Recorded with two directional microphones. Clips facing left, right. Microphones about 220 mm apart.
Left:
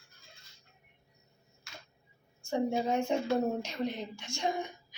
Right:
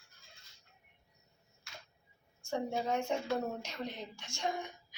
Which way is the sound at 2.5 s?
20° left (ahead or behind).